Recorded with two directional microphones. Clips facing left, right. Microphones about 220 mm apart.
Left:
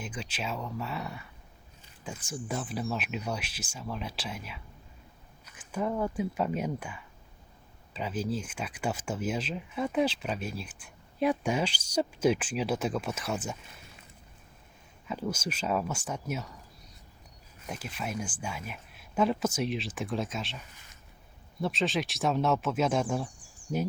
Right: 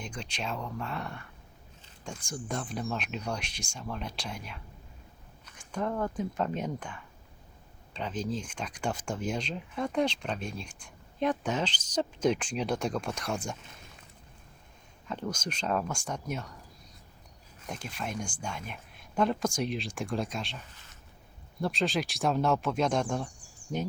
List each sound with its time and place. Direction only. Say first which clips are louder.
0.0 s speech: left 1 dB; 5° left (ahead or behind)
15.0 s speech: left 2 dB; 5° left (ahead or behind)
17.7 s speech: left 1 dB; 5° left (ahead or behind)
21.6 s speech: even; centre (ahead or behind)